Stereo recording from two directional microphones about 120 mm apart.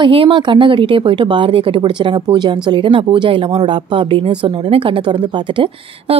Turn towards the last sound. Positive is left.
turn(degrees=-45)  # may be behind; listen again after turning